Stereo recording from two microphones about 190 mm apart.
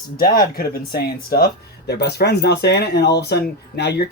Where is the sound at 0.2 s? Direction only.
50° left (ahead or behind).